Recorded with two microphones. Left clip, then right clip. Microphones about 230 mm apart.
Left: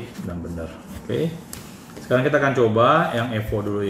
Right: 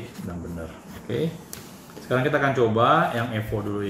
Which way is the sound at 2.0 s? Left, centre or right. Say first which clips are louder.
Left 3 dB; centre.